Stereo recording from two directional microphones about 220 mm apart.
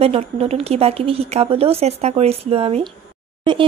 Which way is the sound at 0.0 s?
25° right (ahead or behind).